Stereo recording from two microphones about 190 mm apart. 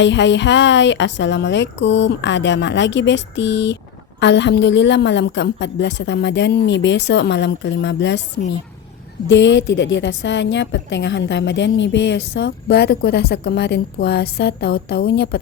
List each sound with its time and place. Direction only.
0.0 s a woman's voice: 70° left (ahead or behind)